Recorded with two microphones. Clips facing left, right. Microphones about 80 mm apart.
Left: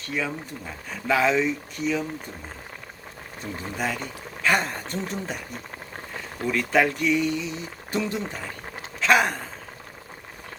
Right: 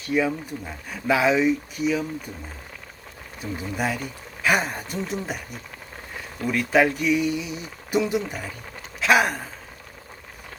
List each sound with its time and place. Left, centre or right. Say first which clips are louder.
0.0 s speech: right 6 dB; centre
3.4 s speech: right 2 dB; centre
6.5 s speech: right 2 dB; centre
8.2 s speech: right 1 dB; left
9.0 s a sound: right 1 dB; centre